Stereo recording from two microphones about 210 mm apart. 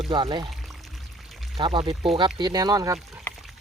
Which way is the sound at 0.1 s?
25° right (ahead or behind).